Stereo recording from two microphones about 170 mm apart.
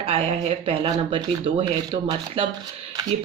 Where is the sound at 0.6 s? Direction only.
30° right (ahead or behind).